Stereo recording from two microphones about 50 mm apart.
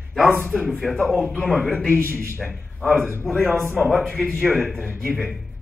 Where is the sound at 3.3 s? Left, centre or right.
Centre.